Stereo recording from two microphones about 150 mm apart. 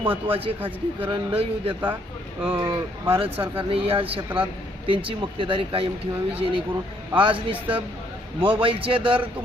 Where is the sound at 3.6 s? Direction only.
35° right (ahead or behind).